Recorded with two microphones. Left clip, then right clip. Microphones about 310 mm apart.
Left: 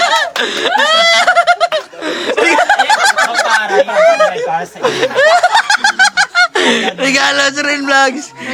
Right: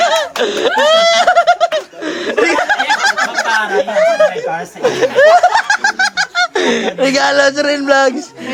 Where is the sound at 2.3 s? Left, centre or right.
Centre.